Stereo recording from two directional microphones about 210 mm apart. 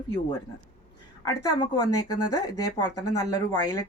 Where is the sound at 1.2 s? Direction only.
15° left (ahead or behind).